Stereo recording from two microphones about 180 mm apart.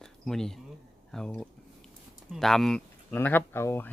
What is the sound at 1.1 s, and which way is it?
Speech, 5° left (ahead or behind).